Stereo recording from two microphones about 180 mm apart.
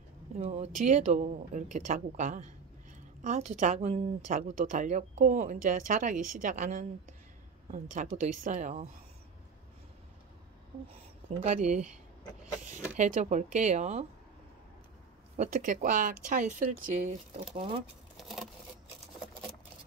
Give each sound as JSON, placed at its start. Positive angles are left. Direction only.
{"t": 0.4, "sound": "speech", "side_deg": -35}
{"t": 10.9, "sound": "speech", "side_deg": -35}
{"t": 12.9, "sound": "speech", "side_deg": -40}
{"t": 15.3, "sound": "speech", "side_deg": -40}
{"t": 18.1, "sound": "patter", "side_deg": 0}